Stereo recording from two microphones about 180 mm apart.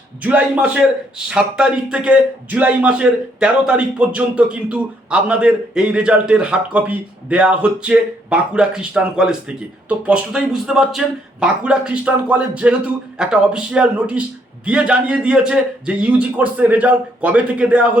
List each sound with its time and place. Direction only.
0.2 s a man's voice: 10° right (ahead or behind)